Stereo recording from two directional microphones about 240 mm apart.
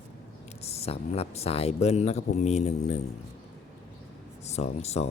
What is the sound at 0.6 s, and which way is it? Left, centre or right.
Speech, left.